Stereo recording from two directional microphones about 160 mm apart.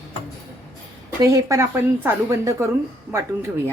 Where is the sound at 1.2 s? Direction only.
20° right (ahead or behind).